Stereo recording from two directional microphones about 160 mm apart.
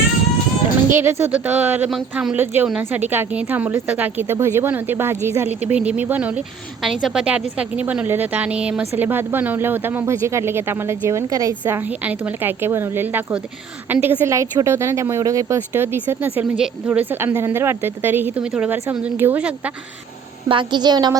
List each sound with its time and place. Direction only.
0.9 s a woman's voice: 15° right (ahead or behind)
20.5 s a woman's voice: 30° right (ahead or behind)